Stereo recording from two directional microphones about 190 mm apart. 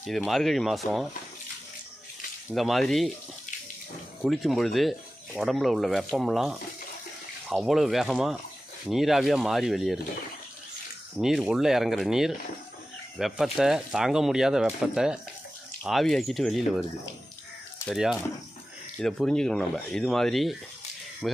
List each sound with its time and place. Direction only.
0.0 s speech: centre (ahead or behind)
2.5 s speech: centre (ahead or behind)
4.2 s speech: centre (ahead or behind)
11.1 s speech: 5° right (ahead or behind)
17.8 s speech: centre (ahead or behind)